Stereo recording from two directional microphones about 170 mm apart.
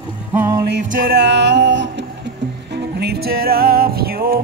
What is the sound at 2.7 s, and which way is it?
Music, 70° right (ahead or behind).